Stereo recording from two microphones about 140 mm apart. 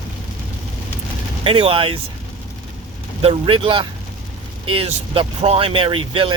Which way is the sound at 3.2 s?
40° right (ahead or behind).